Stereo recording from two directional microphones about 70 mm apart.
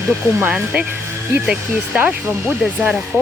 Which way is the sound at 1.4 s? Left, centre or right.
Centre.